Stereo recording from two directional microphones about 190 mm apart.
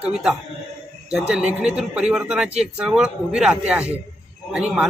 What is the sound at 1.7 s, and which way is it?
Speech, 5° right (ahead or behind).